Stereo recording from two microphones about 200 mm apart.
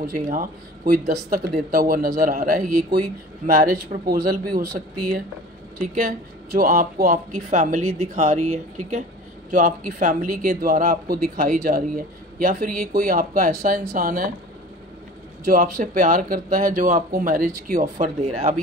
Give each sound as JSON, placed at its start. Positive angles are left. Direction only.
{"t": 0.0, "sound": "speech", "side_deg": -45}
{"t": 15.4, "sound": "speech", "side_deg": -40}